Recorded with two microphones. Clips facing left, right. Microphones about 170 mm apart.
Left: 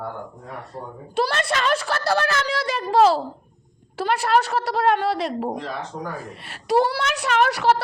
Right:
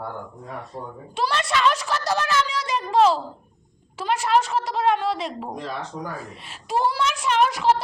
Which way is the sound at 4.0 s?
65° left (ahead or behind).